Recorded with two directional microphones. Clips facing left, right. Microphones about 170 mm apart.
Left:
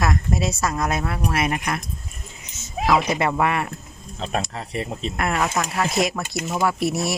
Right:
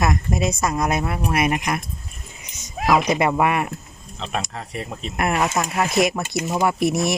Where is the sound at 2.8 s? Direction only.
15° right (ahead or behind).